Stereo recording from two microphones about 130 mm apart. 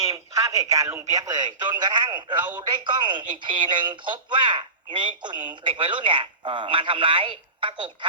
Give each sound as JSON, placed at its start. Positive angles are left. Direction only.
{"t": 0.1, "sound": "a man's voice", "side_deg": -25}